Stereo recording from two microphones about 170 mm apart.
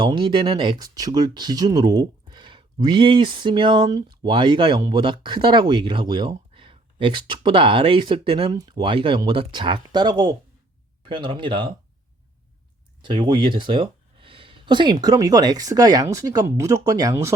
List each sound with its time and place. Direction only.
0.0 s speech: 25° right (ahead or behind)
13.0 s speech: 25° right (ahead or behind)